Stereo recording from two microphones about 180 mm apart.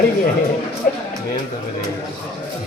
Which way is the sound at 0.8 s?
50° left (ahead or behind).